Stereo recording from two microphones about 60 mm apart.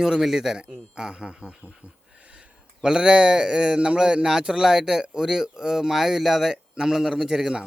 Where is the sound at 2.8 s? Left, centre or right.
Centre.